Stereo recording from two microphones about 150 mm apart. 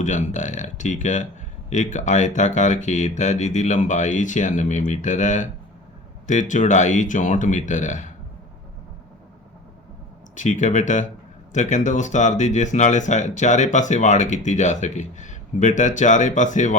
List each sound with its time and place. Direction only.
0.0 s speech: 55° left (ahead or behind)
10.3 s speech: 55° left (ahead or behind)